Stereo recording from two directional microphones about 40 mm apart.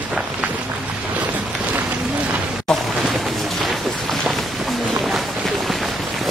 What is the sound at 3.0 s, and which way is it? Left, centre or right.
Boat, centre.